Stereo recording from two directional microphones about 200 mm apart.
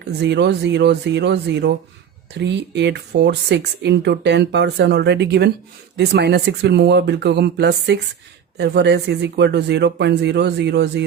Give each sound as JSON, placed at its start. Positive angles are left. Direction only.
{"t": 0.0, "sound": "speech", "side_deg": -60}